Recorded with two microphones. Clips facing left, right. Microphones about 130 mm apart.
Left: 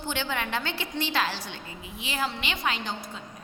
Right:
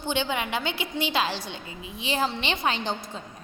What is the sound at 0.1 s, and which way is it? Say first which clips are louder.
A woman's voice: right 3 dB; 20° right (ahead or behind).